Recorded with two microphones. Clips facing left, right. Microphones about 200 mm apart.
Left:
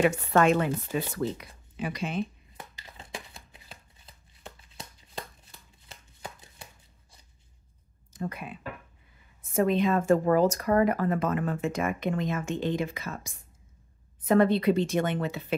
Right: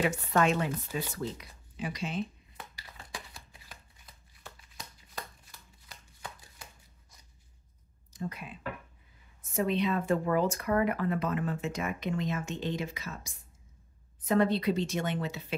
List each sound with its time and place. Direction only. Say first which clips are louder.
0.0 s a woman's voice: left 5 dB; 60° left (ahead or behind)
2.7 s chopping: left 5 dB; 20° left (ahead or behind)
8.1 s a woman's voice: left 4 dB; 55° left (ahead or behind)